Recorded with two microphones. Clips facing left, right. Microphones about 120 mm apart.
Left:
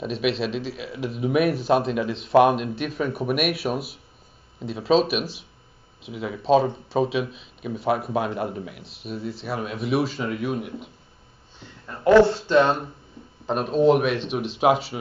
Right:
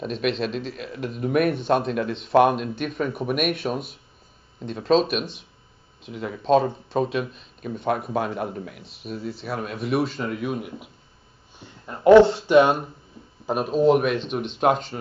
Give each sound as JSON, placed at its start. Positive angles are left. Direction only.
{"t": 0.0, "sound": "speech", "side_deg": 5}
{"t": 11.8, "sound": "speech", "side_deg": -20}